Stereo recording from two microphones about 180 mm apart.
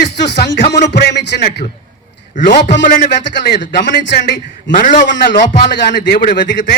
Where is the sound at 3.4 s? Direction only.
75° left (ahead or behind); by 6.3 s 55° left (ahead or behind).